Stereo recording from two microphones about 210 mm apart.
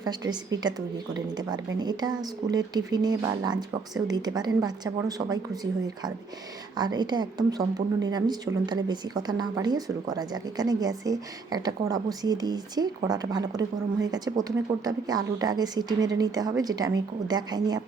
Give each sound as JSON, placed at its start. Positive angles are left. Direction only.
{"t": 0.0, "sound": "speech", "side_deg": -20}
{"t": 6.7, "sound": "speech", "side_deg": -20}